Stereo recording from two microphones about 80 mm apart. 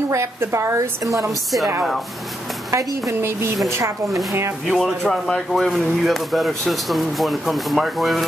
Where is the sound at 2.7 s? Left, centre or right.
Right.